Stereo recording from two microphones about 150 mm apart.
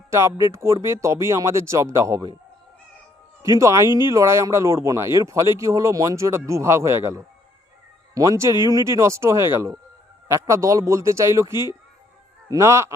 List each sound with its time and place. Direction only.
0.1 s speech: 20° right (ahead or behind)
3.6 s speech: 20° right (ahead or behind)